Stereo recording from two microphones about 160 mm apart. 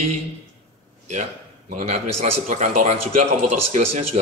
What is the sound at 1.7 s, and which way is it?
A man's voice, 50° right (ahead or behind).